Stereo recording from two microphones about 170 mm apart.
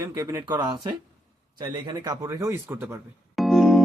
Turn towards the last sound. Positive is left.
turn(degrees=0)  # may be behind; listen again after turning